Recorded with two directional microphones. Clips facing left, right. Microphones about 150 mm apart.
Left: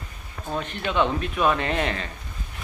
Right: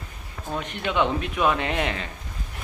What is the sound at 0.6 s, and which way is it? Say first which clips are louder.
Speech: left 1 dB; 15° right (ahead or behind).